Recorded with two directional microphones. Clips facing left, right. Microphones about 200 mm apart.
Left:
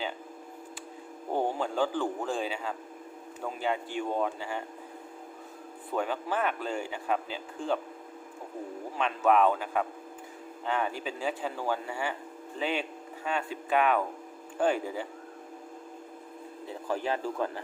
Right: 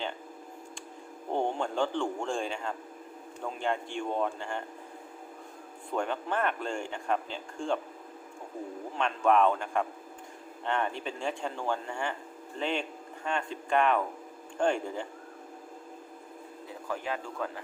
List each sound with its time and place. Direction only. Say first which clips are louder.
1.3 s a man's voice: left 1 dB; 5° left (ahead or behind)
5.9 s speech: left 1 dB; 5° left (ahead or behind)
9.0 s speech: even; 5° left (ahead or behind)
16.6 s speech: left 4 dB; 30° left (ahead or behind)